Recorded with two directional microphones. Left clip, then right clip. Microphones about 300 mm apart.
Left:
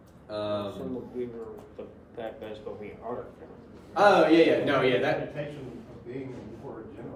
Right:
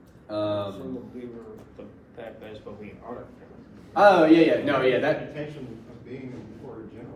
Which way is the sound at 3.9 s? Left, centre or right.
Right.